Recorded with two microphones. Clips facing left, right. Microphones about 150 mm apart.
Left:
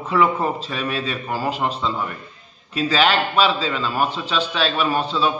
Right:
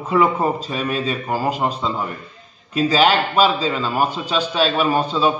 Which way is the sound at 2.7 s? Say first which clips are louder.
Right 3 dB; 45° right (ahead or behind).